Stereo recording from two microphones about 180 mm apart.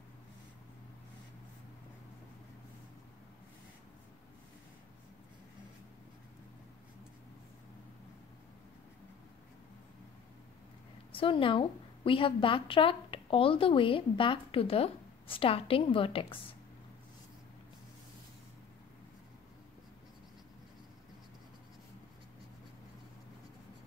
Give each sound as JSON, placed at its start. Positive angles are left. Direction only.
{"t": 11.1, "sound": "a woman's voice", "side_deg": 30}